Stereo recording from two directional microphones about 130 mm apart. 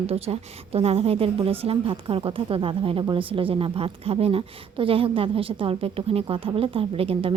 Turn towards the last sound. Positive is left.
turn(degrees=-45)  # may be behind; listen again after turning